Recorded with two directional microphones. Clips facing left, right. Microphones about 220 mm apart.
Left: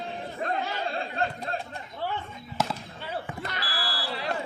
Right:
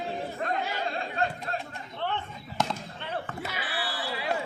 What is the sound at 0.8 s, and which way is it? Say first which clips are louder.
Chatter: even; 30° left (ahead or behind).